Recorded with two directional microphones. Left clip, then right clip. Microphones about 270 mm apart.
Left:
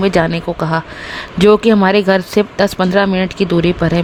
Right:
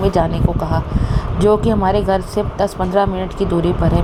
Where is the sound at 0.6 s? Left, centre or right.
Left.